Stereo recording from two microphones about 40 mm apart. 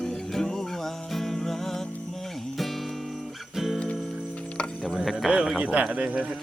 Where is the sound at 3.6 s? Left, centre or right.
Centre.